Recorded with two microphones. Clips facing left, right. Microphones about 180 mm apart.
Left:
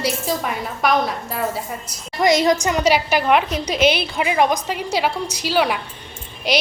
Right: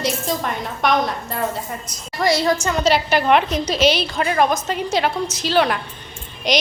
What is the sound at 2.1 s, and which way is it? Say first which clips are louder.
A woman's voice: left 2 dB; 20° left (ahead or behind).